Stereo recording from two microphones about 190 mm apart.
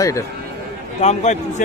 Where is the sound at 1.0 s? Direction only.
35° left (ahead or behind).